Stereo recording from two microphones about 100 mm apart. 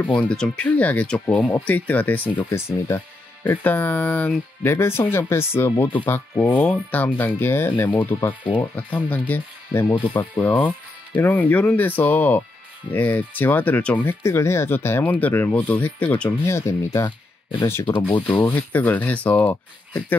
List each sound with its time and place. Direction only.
0.0 s speech: 15° left (ahead or behind)
8.3 s speech: 55° left (ahead or behind)
8.7 s speech: 15° left (ahead or behind)
16.4 s speech: 30° left (ahead or behind)
17.0 s speech: 50° left (ahead or behind)
17.8 s speech: 60° left (ahead or behind)
18.5 s speech: 15° left (ahead or behind)